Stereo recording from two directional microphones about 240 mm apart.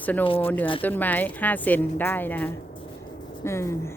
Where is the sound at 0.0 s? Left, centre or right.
Centre.